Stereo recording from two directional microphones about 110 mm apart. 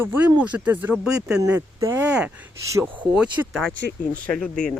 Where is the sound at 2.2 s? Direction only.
15° right (ahead or behind).